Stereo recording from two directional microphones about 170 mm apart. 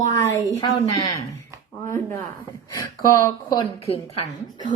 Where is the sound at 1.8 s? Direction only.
50° right (ahead or behind).